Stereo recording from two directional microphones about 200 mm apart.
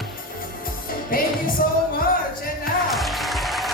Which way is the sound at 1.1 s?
45° left (ahead or behind).